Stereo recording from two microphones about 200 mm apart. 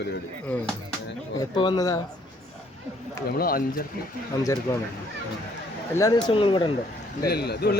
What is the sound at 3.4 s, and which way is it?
Speech, 45° left (ahead or behind).